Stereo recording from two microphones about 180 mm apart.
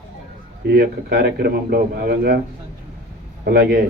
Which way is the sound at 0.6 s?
60° right (ahead or behind).